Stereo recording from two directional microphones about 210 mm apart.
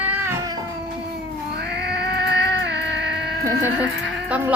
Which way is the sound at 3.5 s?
15° left (ahead or behind).